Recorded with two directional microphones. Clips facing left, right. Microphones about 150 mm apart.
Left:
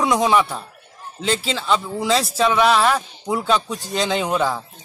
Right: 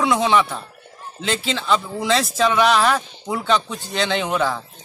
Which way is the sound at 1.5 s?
5° left (ahead or behind).